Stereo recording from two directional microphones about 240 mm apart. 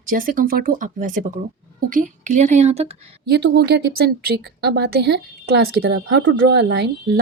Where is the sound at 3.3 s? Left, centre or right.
Right.